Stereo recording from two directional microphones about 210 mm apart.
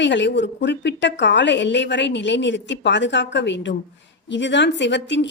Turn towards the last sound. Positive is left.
turn(degrees=60)  # may be behind; listen again after turning